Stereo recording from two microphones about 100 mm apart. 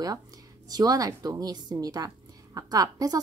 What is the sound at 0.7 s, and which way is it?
Speech, 40° right (ahead or behind).